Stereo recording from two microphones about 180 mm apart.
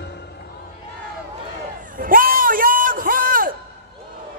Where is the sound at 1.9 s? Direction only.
50° right (ahead or behind).